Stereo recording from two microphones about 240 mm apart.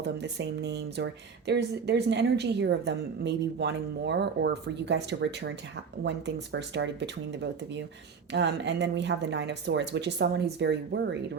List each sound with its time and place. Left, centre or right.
0.0 s a woman's voice: right